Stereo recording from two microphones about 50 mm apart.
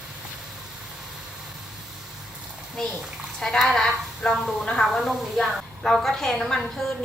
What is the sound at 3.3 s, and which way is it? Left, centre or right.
Speech, centre.